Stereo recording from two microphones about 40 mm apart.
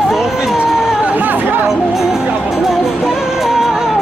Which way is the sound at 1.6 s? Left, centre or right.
Centre.